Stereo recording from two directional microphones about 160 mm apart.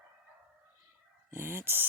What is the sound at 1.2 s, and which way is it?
Chicken, 15° right (ahead or behind).